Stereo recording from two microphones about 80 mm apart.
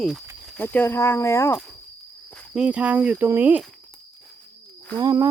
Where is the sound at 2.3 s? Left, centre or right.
Centre.